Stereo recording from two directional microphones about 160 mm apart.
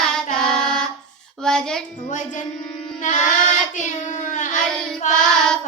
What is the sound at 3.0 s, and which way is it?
Child singing, 50° left (ahead or behind).